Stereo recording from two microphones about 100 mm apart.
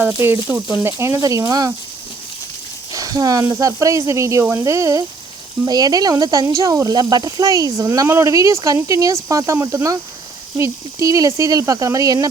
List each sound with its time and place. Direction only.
0.4 s speech: 10° right (ahead or behind)
0.8 s speech: 25° right (ahead or behind)
2.9 s speech: 35° right (ahead or behind)